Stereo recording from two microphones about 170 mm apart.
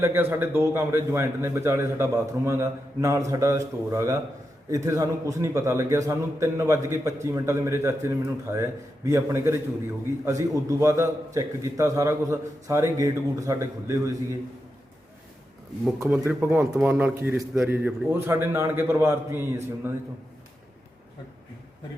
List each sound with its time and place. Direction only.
0.0 s a man's voice: 15° right (ahead or behind)
16.0 s a man's voice: 10° right (ahead or behind)